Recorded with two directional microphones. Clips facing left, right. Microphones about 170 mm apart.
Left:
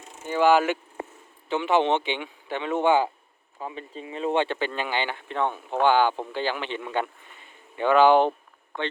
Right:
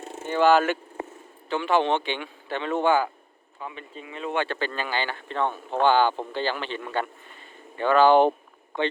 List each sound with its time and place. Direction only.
0.3 s speech: 10° left (ahead or behind)
3.6 s speech: 35° left (ahead or behind)
4.4 s speech: 20° left (ahead or behind)